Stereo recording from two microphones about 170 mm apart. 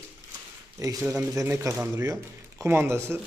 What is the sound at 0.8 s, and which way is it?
A man's voice, 20° right (ahead or behind).